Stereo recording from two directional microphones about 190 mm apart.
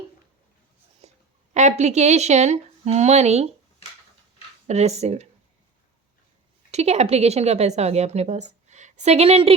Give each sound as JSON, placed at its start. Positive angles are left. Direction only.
{"t": 1.0, "sound": "a sound", "side_deg": -35}
{"t": 1.5, "sound": "a woman's voice", "side_deg": -35}
{"t": 4.6, "sound": "a woman's voice", "side_deg": -35}
{"t": 6.7, "sound": "a woman's voice", "side_deg": -35}